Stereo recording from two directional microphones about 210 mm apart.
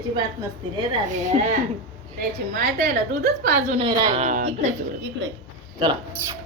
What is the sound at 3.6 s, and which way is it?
Speech, 25° right (ahead or behind).